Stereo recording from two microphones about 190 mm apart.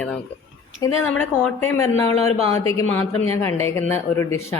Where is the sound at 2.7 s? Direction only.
10° left (ahead or behind).